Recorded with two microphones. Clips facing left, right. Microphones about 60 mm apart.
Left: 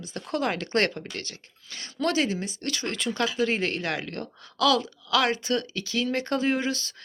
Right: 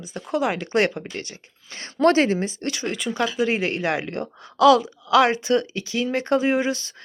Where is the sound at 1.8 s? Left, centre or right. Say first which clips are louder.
Right 8 dB; right.